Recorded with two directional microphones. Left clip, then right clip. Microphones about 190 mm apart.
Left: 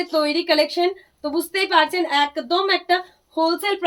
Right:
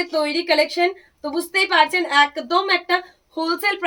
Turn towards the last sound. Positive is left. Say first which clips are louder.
# left 1 dB
turn(degrees=-10)  # may be behind; listen again after turning